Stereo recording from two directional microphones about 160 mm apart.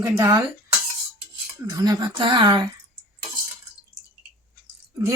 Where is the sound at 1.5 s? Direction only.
20° right (ahead or behind).